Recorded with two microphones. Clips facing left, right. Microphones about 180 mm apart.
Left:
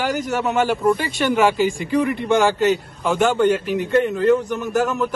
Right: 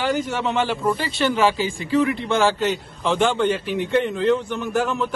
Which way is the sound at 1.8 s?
50° left (ahead or behind).